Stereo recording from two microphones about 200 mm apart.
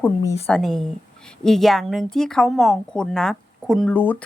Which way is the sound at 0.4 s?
5° left (ahead or behind).